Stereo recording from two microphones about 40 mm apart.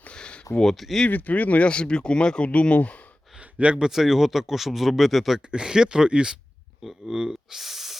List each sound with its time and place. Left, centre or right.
0.1 s a sound: left
0.6 s speech: centre
1.1 s speech: left
1.6 s speech: left
3.8 s speech: centre
5.5 s speech: centre
6.8 s speech: centre